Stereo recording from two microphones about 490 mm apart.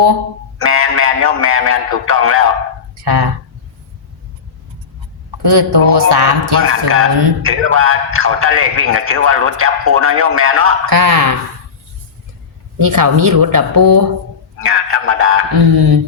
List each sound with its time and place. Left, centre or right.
0.6 s speech: right
3.0 s speech: right
5.4 s a woman's voice: right
6.6 s a man's voice: right
10.8 s a woman's voice: right
12.8 s speech: right
14.6 s a man's voice: right
15.7 s a woman's voice: right